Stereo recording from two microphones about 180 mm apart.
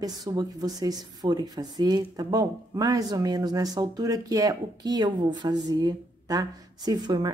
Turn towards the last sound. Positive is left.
turn(degrees=-25)  # may be behind; listen again after turning